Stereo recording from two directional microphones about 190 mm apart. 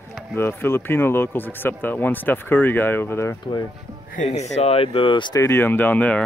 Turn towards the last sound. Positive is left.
turn(degrees=10)  # may be behind; listen again after turning